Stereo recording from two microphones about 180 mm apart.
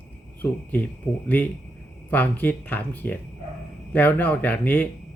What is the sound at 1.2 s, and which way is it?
Speech, 10° left (ahead or behind).